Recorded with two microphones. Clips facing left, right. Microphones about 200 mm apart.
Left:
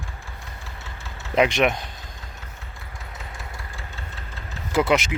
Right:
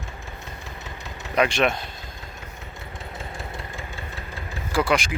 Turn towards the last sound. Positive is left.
turn(degrees=20)  # may be behind; listen again after turning